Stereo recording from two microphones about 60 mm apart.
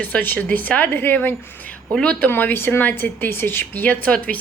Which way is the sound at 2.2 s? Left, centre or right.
Left.